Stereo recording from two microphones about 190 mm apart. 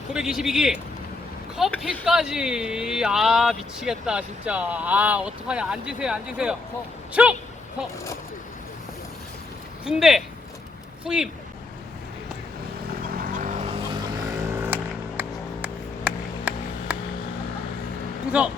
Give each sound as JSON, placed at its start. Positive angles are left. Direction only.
{"t": 0.1, "sound": "speech", "side_deg": -5}
{"t": 9.8, "sound": "speech", "side_deg": -5}
{"t": 13.1, "sound": "vehicle", "side_deg": -45}
{"t": 13.9, "sound": "vehicle", "side_deg": -20}
{"t": 18.3, "sound": "speech", "side_deg": -5}